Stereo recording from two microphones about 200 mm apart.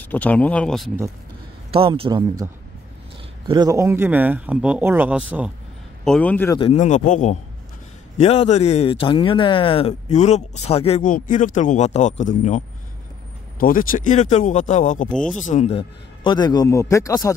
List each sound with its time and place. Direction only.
0.0 s speech: 10° left (ahead or behind)
1.7 s speech: 25° right (ahead or behind)
3.4 s a man's voice: 20° right (ahead or behind)
6.0 s speech: 5° left (ahead or behind)
6.6 s speech: 35° left (ahead or behind)
16.3 s speech: 20° left (ahead or behind)